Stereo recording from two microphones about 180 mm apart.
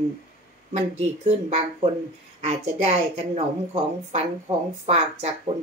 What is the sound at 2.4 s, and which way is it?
A woman's voice, 35° right (ahead or behind).